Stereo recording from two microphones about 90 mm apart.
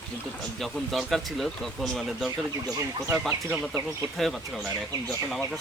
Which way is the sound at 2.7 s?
30° right (ahead or behind).